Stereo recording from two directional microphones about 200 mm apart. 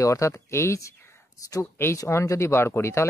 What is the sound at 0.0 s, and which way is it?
Speech, 15° left (ahead or behind).